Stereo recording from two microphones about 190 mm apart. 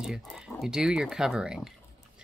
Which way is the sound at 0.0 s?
5° right (ahead or behind).